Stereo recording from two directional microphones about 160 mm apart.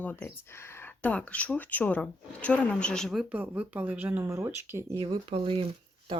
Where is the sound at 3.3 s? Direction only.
10° right (ahead or behind).